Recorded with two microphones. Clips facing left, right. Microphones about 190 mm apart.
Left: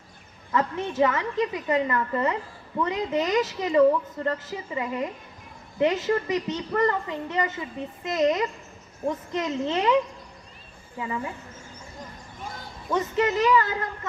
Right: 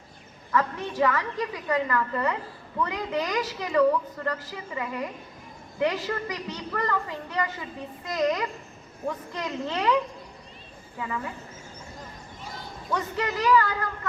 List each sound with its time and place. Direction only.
0.5 s a woman's voice: 20° left (ahead or behind)
12.9 s a woman's voice: 20° left (ahead or behind)